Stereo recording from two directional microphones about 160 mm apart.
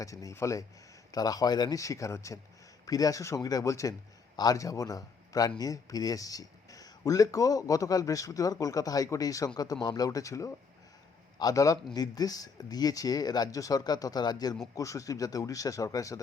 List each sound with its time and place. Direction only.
0.0 s a man's voice: 20° left (ahead or behind)